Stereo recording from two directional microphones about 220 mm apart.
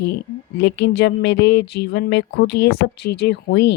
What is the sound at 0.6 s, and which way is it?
Speech, 50° left (ahead or behind).